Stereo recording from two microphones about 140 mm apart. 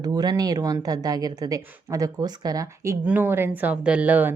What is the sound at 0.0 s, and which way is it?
A woman's voice, 30° right (ahead or behind).